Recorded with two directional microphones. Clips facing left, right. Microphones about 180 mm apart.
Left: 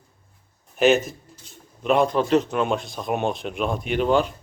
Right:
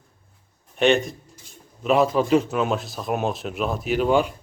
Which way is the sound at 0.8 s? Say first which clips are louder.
Left 1 dB; centre (ahead or behind).